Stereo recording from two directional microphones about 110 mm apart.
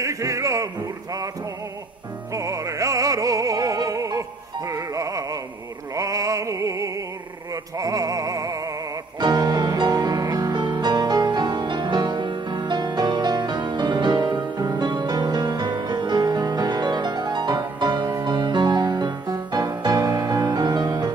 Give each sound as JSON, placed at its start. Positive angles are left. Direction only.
{"t": 0.0, "sound": "speech", "side_deg": -30}
{"t": 2.3, "sound": "music", "side_deg": -30}